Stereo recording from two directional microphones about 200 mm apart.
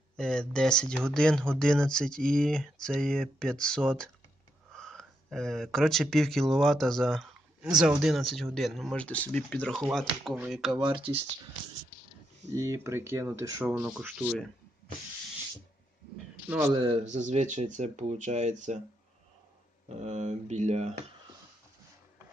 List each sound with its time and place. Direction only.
0.2 s speech: 5° left (ahead or behind)
9.8 s speech: 5° right (ahead or behind)
10.8 s speech: 25° right (ahead or behind)
12.5 s speech: 15° right (ahead or behind)
16.4 s speech: 15° right (ahead or behind)
16.8 s speech: 30° right (ahead or behind)
19.9 s speech: 35° right (ahead or behind)